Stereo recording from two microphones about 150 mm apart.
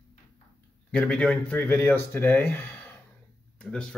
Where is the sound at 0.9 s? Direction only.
5° left (ahead or behind).